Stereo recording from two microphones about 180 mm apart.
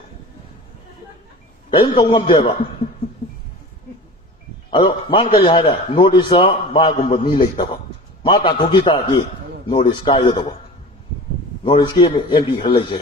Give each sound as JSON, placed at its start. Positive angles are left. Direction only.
{"t": 1.7, "sound": "a man's voice", "side_deg": 30}
{"t": 4.7, "sound": "a man's voice", "side_deg": 25}
{"t": 11.6, "sound": "a man's voice", "side_deg": 25}